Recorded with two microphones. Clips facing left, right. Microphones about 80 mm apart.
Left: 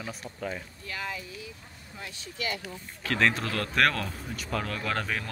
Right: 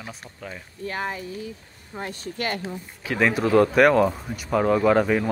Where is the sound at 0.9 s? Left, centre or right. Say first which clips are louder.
Right 8 dB; right.